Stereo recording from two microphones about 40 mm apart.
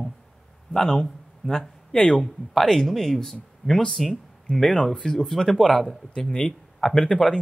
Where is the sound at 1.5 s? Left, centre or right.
Left.